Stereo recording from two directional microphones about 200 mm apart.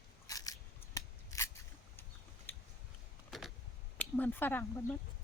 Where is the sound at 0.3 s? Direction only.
15° left (ahead or behind).